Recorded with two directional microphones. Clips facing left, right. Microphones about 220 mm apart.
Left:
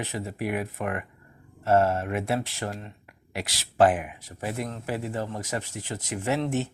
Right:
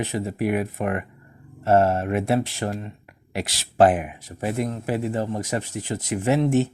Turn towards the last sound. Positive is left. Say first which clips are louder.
# right 7 dB
turn(degrees=-15)  # may be behind; listen again after turning